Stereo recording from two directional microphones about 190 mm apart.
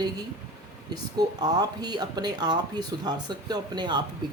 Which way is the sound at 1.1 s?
20° right (ahead or behind).